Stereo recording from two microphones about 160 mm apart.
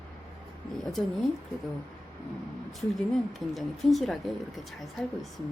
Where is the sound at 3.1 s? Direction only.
Centre (ahead or behind).